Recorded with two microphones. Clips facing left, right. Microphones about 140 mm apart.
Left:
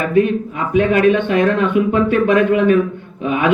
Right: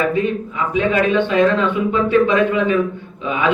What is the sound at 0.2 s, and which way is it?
A man's voice, 55° left (ahead or behind).